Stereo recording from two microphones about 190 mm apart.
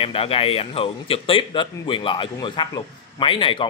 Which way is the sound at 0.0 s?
30° left (ahead or behind).